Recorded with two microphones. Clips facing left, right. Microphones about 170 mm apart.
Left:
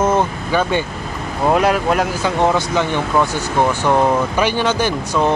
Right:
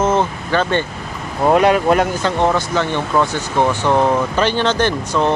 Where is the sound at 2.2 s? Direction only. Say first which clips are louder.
Even; 15° left (ahead or behind).